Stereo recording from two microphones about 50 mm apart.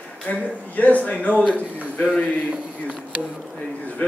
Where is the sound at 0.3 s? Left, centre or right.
Left.